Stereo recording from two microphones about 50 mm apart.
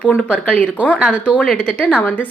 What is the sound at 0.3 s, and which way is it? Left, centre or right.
Speech, left.